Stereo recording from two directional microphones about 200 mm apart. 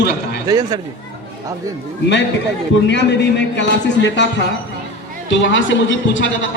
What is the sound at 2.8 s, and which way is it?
A man's voice, 60° left (ahead or behind).